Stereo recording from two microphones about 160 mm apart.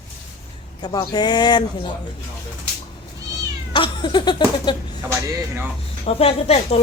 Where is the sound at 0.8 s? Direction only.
25° left (ahead or behind).